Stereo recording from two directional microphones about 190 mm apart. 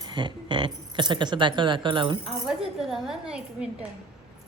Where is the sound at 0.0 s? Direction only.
25° right (ahead or behind).